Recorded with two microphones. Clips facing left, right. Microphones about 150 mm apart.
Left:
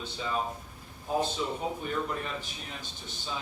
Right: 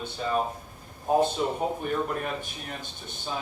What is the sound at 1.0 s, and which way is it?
A man's voice, 55° right (ahead or behind).